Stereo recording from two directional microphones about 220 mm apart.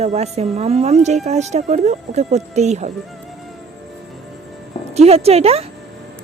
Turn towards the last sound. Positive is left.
turn(degrees=-25)  # may be behind; listen again after turning